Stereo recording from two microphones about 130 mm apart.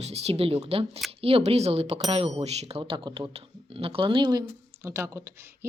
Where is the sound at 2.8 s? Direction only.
40° right (ahead or behind); by 5.3 s 20° right (ahead or behind).